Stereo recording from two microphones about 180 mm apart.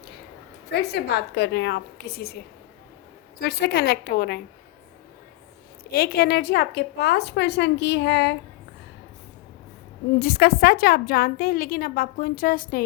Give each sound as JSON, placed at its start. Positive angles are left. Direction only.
{"t": 0.7, "sound": "a woman's voice", "side_deg": 65}
{"t": 3.4, "sound": "a woman's voice", "side_deg": 65}
{"t": 5.9, "sound": "a woman's voice", "side_deg": 60}
{"t": 10.2, "sound": "a woman's voice", "side_deg": 60}